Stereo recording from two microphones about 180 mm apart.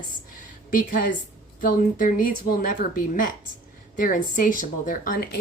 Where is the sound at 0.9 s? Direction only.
50° left (ahead or behind).